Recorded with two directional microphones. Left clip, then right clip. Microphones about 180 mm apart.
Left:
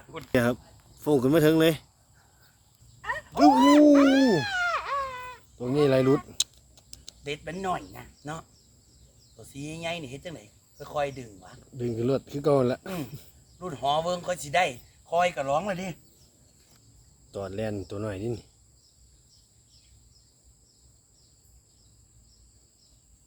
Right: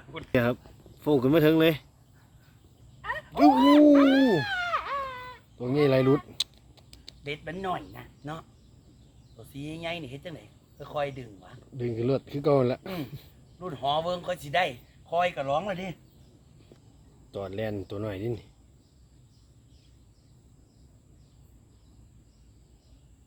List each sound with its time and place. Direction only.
0.3 s speech: 5° left (ahead or behind)
3.0 s wild animals: 15° left (ahead or behind)
3.5 s speech: 15° left (ahead or behind)
3.9 s cat: 15° left (ahead or behind)
5.5 s speech: centre (ahead or behind)
17.3 s speech: centre (ahead or behind)